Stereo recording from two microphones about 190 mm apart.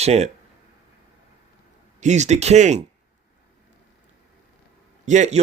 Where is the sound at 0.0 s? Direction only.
35° right (ahead or behind).